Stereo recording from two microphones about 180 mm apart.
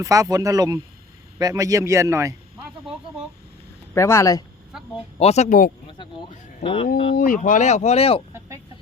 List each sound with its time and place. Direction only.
0.0 s a man's voice: 20° right (ahead or behind)
3.9 s speech: 15° left (ahead or behind)
4.7 s a sound: centre (ahead or behind)
5.2 s speech: 40° left (ahead or behind)
6.6 s speech: 30° left (ahead or behind)
7.2 s speech: 50° left (ahead or behind)